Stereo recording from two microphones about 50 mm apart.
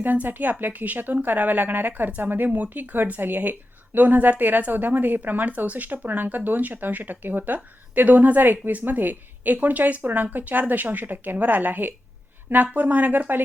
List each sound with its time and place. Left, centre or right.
0.0 s speech: right